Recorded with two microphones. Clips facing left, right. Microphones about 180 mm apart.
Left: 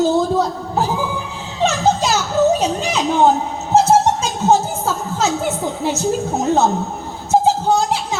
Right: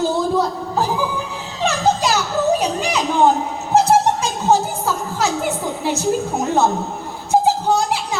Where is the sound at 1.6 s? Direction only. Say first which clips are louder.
Left 2 dB; 20° left (ahead or behind).